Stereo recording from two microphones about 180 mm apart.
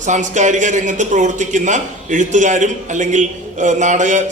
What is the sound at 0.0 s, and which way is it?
A man's voice, 45° right (ahead or behind).